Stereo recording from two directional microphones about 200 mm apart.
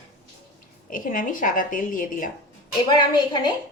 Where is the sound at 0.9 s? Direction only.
40° left (ahead or behind).